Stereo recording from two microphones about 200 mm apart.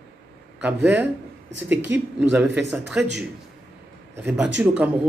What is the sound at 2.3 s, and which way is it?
Speech, 10° right (ahead or behind).